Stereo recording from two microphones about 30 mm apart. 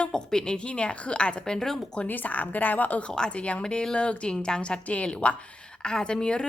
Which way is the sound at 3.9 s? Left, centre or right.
Left.